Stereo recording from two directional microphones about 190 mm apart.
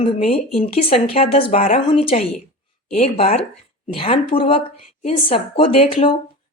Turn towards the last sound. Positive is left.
turn(degrees=30)  # may be behind; listen again after turning